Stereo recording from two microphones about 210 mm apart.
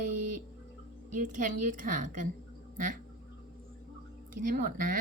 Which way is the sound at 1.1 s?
35° right (ahead or behind).